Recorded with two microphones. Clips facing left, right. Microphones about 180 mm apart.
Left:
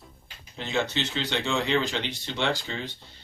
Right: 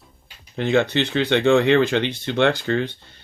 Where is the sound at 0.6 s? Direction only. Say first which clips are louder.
Right 9 dB; 60° right (ahead or behind).